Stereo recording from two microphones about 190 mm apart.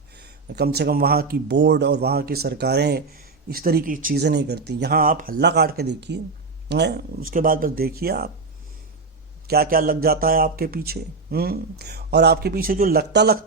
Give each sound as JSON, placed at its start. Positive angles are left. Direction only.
{"t": 0.1, "sound": "speech", "side_deg": -60}
{"t": 9.5, "sound": "speech", "side_deg": -50}